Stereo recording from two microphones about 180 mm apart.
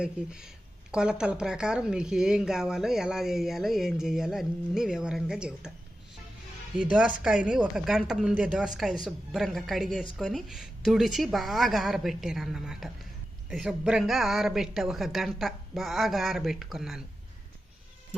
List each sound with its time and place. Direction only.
0.0 s speech: 5° right (ahead or behind)
7.9 s speech: 5° right (ahead or behind)